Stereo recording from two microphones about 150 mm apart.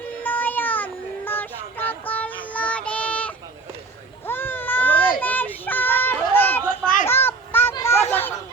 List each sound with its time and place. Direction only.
0.2 s child singing: 10° left (ahead or behind)
4.3 s baby cry: 15° left (ahead or behind)
5.2 s a sound: 10° left (ahead or behind)